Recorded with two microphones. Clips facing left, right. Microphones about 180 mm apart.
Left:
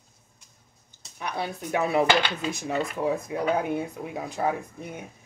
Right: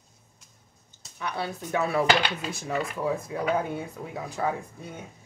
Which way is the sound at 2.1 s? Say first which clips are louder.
Left 1 dB; 10° right (ahead or behind).